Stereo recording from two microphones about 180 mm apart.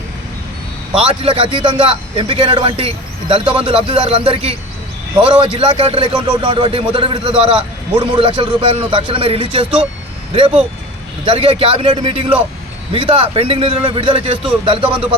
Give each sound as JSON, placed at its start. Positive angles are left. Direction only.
{"t": 1.0, "sound": "speech", "side_deg": -30}
{"t": 5.5, "sound": "speech", "side_deg": -30}